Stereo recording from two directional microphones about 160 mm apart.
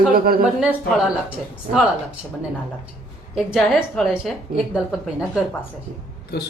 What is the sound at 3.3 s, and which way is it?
Speech, 5° right (ahead or behind).